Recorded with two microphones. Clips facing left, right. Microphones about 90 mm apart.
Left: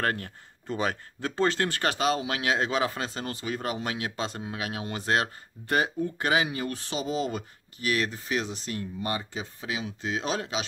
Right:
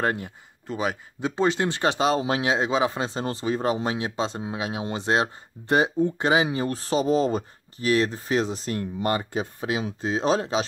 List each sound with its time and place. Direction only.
0.0 s speech: 15° right (ahead or behind)
0.7 s speech: 5° right (ahead or behind)
1.2 s speech: 15° right (ahead or behind); by 10.6 s 35° right (ahead or behind)